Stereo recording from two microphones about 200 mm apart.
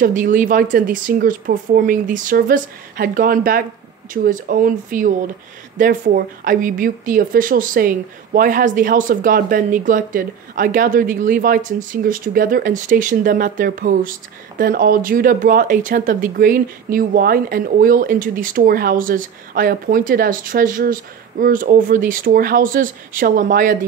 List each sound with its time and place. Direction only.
0.0 s speech: 40° right (ahead or behind)